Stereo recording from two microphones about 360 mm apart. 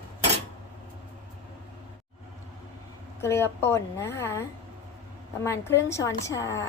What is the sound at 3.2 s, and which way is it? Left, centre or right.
A woman's voice, centre.